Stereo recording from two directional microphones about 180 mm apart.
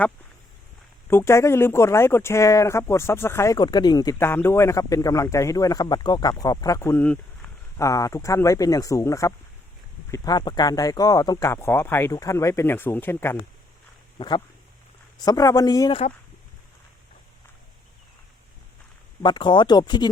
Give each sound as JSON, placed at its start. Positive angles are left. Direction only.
{"t": 1.1, "sound": "speech", "side_deg": 15}
{"t": 7.9, "sound": "speech", "side_deg": 20}
{"t": 14.2, "sound": "speech", "side_deg": 25}
{"t": 19.2, "sound": "speech", "side_deg": 25}